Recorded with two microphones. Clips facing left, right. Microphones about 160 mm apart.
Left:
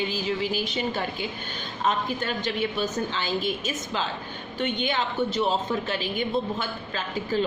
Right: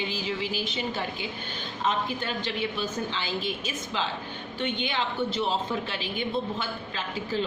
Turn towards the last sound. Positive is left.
turn(degrees=45)  # may be behind; listen again after turning